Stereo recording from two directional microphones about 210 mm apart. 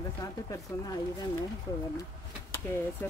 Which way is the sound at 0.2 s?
15° left (ahead or behind).